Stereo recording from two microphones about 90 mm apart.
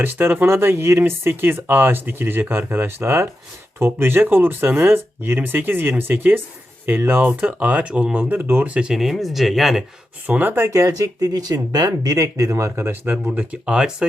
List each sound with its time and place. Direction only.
0.0 s speech: 20° right (ahead or behind); by 9.8 s centre (ahead or behind)
10.2 s speech: 20° right (ahead or behind)
10.7 s speech: 40° right (ahead or behind); by 14.1 s 10° right (ahead or behind)